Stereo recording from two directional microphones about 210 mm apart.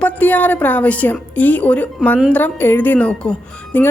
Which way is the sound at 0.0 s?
10° left (ahead or behind).